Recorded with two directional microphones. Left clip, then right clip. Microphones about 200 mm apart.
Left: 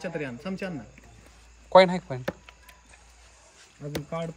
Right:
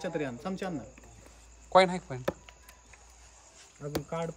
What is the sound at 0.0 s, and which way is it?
Speech, 30° right (ahead or behind).